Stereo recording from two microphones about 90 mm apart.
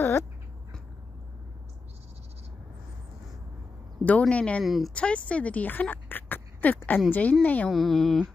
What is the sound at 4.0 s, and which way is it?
Speech, 15° left (ahead or behind).